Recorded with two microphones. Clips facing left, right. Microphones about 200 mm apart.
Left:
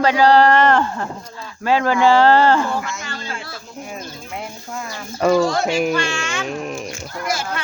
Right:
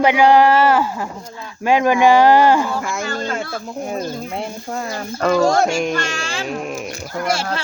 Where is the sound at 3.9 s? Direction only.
35° right (ahead or behind).